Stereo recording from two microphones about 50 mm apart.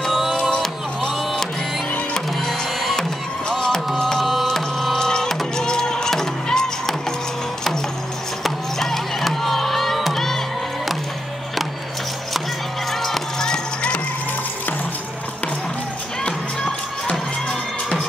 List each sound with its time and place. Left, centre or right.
0.1 s music: centre
1.1 s printer: centre
3.0 s music: centre
8.5 s music: centre
12.9 s music: centre
16.3 s music: centre